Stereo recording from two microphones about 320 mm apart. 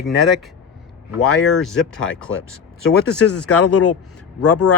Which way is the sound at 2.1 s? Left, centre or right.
Left.